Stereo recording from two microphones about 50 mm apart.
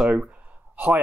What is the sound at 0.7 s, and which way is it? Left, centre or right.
Speech, right.